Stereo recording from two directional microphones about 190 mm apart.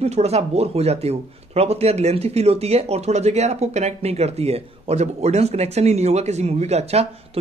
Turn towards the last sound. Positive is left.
turn(degrees=-35)  # may be behind; listen again after turning